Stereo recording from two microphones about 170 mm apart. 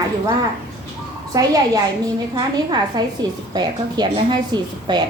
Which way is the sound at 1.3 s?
20° right (ahead or behind).